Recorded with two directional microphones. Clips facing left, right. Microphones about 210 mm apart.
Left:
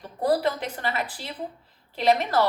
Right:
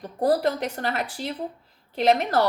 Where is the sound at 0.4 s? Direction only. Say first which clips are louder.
Right 2 dB; 45° right (ahead or behind).